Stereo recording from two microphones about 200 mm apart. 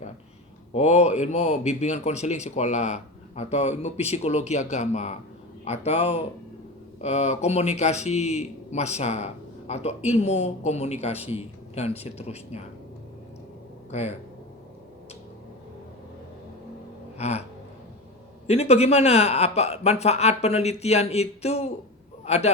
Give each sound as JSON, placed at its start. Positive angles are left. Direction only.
{"t": 0.7, "sound": "speech", "side_deg": 35}
{"t": 13.9, "sound": "speech", "side_deg": 35}
{"t": 17.2, "sound": "a sound", "side_deg": 35}
{"t": 18.4, "sound": "a man's voice", "side_deg": 30}